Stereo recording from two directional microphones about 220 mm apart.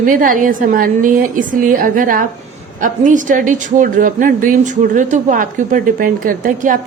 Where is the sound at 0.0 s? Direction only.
40° right (ahead or behind).